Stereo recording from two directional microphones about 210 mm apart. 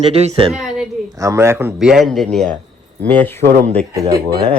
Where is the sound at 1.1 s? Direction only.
15° right (ahead or behind).